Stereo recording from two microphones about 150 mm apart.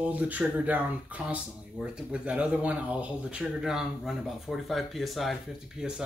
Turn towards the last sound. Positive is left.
turn(degrees=-5)  # may be behind; listen again after turning